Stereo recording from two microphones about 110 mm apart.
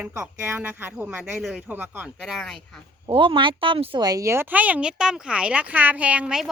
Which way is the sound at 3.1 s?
50° right (ahead or behind).